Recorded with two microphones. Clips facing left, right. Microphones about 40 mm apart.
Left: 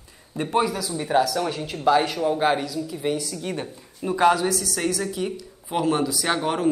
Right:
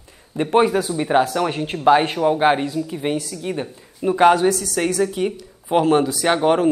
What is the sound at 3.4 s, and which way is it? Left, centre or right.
Speech, centre.